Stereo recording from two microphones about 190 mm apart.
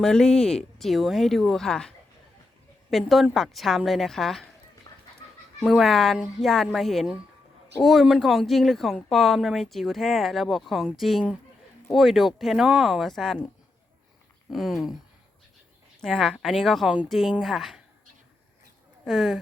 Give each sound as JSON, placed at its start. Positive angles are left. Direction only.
{"t": 0.0, "sound": "speech", "side_deg": 5}
{"t": 2.9, "sound": "speech", "side_deg": 0}
{"t": 4.9, "sound": "dog", "side_deg": 20}
{"t": 5.6, "sound": "speech", "side_deg": 0}
{"t": 14.5, "sound": "speech", "side_deg": 0}
{"t": 16.0, "sound": "speech", "side_deg": 0}
{"t": 19.0, "sound": "speech", "side_deg": 0}